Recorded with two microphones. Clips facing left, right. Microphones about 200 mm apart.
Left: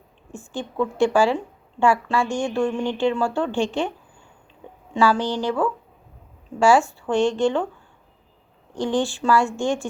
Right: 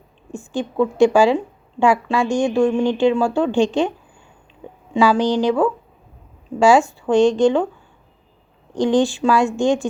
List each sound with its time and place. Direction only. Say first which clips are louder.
0.3 s a woman's voice: right 6 dB; 15° right (ahead or behind)
4.9 s a woman's voice: right 5 dB; 15° right (ahead or behind)
8.7 s a woman's voice: right 6 dB; 15° right (ahead or behind)